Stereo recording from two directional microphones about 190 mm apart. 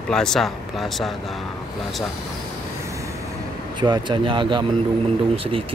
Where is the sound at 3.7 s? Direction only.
25° right (ahead or behind).